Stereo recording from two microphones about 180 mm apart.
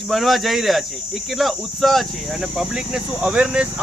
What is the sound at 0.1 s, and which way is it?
Speech, centre (ahead or behind).